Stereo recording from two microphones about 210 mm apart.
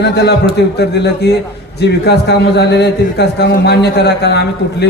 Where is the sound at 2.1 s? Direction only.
55° left (ahead or behind).